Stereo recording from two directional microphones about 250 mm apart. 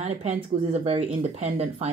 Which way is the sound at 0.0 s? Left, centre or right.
Right.